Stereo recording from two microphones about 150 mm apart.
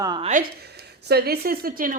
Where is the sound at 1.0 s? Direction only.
90° right; by 2.0 s 70° right (ahead or behind).